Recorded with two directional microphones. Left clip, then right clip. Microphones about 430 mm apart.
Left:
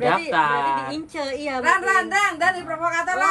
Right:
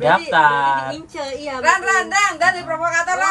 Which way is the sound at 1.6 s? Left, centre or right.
Centre.